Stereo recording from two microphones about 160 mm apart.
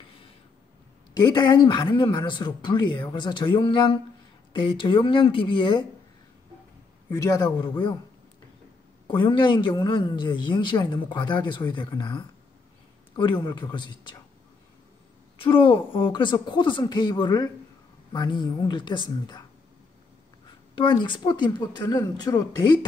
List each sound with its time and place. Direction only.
1.2 s a man's voice: 25° left (ahead or behind)
7.1 s a man's voice: 20° left (ahead or behind)
9.0 s a man's voice: 30° left (ahead or behind)
15.4 s a man's voice: 35° left (ahead or behind)
20.7 s a man's voice: 30° left (ahead or behind)